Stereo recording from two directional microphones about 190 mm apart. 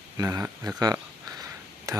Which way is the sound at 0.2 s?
15° right (ahead or behind).